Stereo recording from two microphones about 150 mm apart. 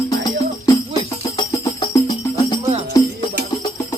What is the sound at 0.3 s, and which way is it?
Music, 25° left (ahead or behind).